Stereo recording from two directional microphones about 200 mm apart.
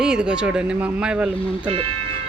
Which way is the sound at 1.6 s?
25° right (ahead or behind).